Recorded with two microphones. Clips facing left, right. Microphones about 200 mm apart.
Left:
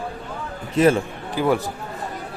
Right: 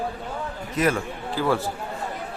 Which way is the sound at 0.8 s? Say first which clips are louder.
Left 6 dB; 25° left (ahead or behind).